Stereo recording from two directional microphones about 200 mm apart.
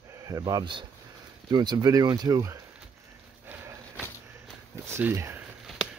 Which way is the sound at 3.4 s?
10° right (ahead or behind).